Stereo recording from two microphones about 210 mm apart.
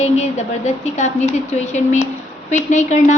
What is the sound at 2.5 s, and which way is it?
Speech, 35° left (ahead or behind).